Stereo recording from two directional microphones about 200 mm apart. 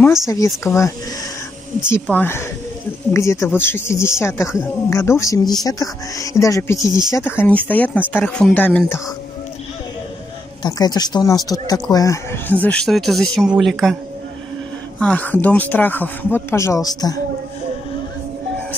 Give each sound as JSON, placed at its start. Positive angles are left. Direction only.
{"t": 0.4, "sound": "speech", "side_deg": 15}
{"t": 2.0, "sound": "speech", "side_deg": 10}
{"t": 10.6, "sound": "speech", "side_deg": 20}
{"t": 15.0, "sound": "speech", "side_deg": 5}